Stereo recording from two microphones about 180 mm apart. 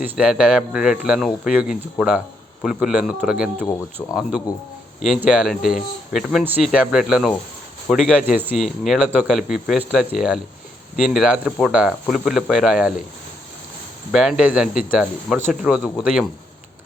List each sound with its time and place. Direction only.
0.0 s speech: 5° right (ahead or behind)
14.1 s speech: centre (ahead or behind)